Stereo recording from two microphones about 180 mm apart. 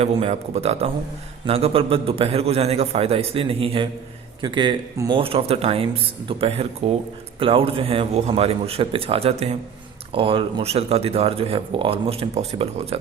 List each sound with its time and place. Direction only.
0.0 s speech: 35° right (ahead or behind)